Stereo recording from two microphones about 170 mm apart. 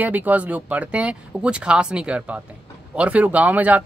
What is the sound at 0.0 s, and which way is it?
Speech, 10° right (ahead or behind).